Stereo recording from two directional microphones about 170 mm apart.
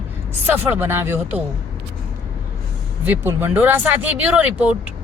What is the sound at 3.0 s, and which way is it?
A woman's voice, 10° right (ahead or behind).